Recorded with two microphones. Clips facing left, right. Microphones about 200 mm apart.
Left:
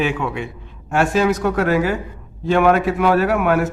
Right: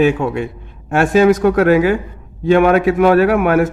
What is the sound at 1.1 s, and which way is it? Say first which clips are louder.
Speech: right 10 dB; 55° right (ahead or behind).